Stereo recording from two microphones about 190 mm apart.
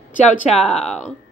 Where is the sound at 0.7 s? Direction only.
5° left (ahead or behind).